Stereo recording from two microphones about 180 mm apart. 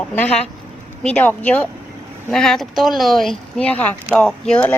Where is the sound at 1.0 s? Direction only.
10° left (ahead or behind).